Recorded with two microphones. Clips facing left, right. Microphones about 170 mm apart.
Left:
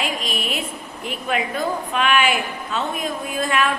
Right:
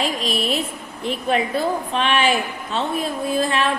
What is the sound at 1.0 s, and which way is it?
A woman's voice, 35° right (ahead or behind).